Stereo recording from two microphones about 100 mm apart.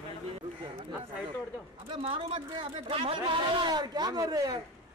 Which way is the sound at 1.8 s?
65° right (ahead or behind).